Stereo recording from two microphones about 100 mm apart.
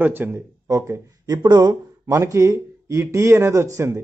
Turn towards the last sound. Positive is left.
turn(degrees=-30)  # may be behind; listen again after turning